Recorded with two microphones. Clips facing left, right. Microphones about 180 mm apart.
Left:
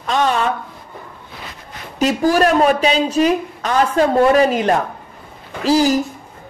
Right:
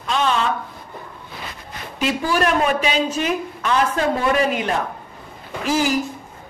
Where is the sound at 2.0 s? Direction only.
40° left (ahead or behind).